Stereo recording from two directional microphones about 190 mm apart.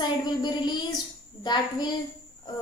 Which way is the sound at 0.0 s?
25° left (ahead or behind).